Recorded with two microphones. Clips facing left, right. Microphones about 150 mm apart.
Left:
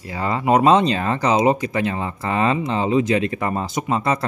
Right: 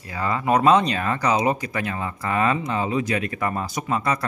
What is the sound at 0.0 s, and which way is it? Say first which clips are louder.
Speech: left 3 dB; 25° left (ahead or behind).